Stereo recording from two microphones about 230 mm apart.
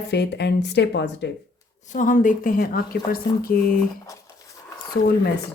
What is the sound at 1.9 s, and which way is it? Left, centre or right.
A woman's voice, left.